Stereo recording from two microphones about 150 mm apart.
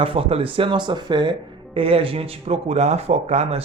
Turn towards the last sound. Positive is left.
turn(degrees=-45)  # may be behind; listen again after turning